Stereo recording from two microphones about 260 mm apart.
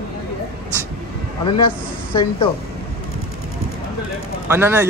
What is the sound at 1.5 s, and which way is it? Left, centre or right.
Speech, centre.